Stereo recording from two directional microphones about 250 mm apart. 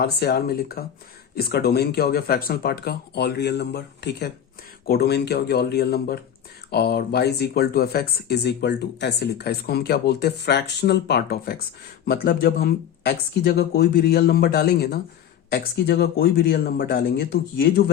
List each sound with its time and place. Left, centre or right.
0.0 s speech: left